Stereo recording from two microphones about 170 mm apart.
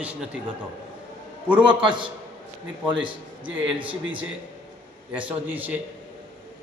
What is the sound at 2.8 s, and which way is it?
Speech, 30° right (ahead or behind).